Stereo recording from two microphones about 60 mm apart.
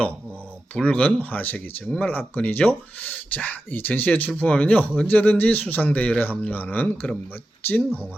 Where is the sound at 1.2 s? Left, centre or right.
Left.